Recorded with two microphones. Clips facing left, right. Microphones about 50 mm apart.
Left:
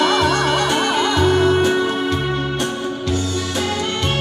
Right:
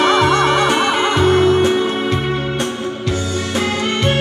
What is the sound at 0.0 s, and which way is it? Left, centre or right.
Music, right.